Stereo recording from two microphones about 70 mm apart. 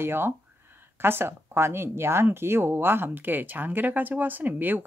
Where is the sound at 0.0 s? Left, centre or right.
Right.